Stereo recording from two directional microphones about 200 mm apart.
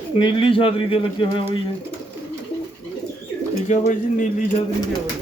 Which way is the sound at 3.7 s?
35° left (ahead or behind).